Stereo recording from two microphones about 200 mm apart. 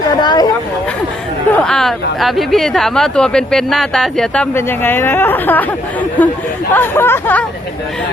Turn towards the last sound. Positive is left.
turn(degrees=10)  # may be behind; listen again after turning